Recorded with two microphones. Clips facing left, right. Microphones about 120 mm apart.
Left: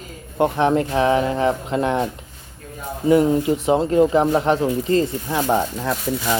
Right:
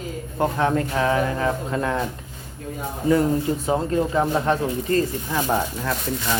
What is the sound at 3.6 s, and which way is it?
Speech, 20° left (ahead or behind).